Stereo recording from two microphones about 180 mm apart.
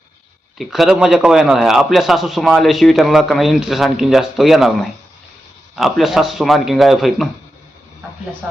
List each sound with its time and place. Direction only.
0.6 s a man's voice: centre (ahead or behind)